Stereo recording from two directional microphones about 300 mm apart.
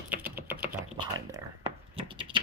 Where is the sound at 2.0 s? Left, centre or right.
Centre.